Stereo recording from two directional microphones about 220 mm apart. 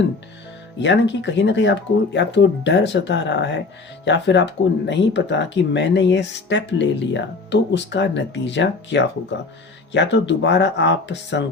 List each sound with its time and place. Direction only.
0.8 s speech: 55° left (ahead or behind)